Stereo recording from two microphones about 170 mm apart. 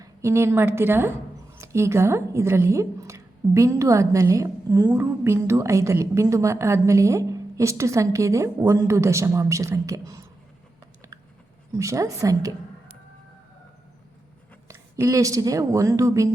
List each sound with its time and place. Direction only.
0.0 s a woman's voice: 15° right (ahead or behind)
11.7 s speech: 20° right (ahead or behind)
14.7 s speech: 20° right (ahead or behind)